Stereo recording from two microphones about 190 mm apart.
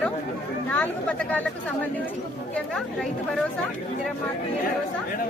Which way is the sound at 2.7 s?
Centre (ahead or behind).